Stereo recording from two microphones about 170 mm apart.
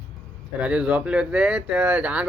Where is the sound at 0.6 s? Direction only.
5° right (ahead or behind).